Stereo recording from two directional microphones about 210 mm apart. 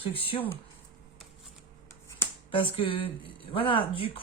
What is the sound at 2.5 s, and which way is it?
Speech, 25° left (ahead or behind).